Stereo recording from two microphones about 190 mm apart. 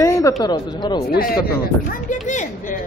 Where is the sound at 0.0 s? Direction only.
15° left (ahead or behind).